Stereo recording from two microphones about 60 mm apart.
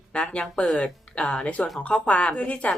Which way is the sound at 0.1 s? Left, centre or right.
Centre.